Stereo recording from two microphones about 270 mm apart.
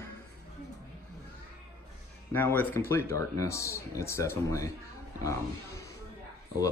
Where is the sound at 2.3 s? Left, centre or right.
Centre.